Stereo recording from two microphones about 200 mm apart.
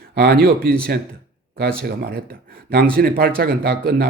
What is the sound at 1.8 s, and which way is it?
Speech, 50° right (ahead or behind).